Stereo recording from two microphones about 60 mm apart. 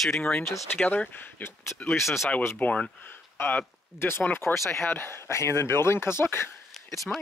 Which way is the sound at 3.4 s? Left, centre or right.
Left.